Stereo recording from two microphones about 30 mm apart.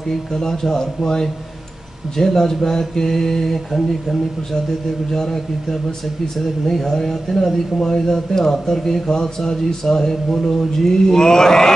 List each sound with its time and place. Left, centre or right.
0.1 s speech: centre